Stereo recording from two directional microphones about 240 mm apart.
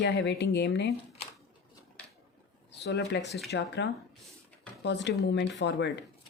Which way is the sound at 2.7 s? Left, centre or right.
Left.